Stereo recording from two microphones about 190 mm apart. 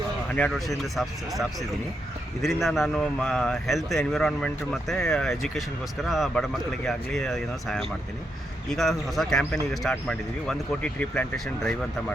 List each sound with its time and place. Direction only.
0.3 s speech: 5° left (ahead or behind)